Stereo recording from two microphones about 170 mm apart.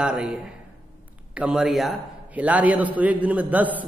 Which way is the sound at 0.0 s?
5° right (ahead or behind).